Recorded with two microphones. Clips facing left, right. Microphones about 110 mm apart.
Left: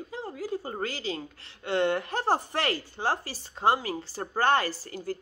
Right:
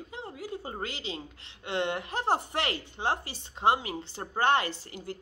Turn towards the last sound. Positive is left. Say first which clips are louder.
# left 4 dB
turn(degrees=-25)  # may be behind; listen again after turning